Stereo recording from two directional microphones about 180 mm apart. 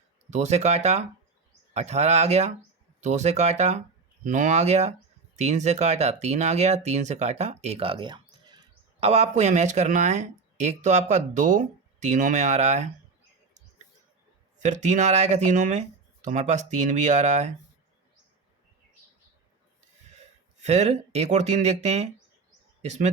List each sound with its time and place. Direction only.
0.3 s speech: 40° right (ahead or behind)
14.6 s speech: 40° right (ahead or behind)
20.6 s speech: 40° right (ahead or behind)